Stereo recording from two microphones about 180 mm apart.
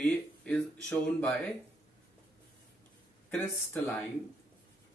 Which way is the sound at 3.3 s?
10° left (ahead or behind).